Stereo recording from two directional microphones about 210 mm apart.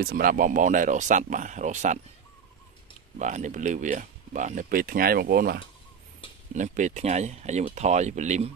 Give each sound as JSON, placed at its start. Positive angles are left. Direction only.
{"t": 0.0, "sound": "speech", "side_deg": -45}
{"t": 3.2, "sound": "speech", "side_deg": -35}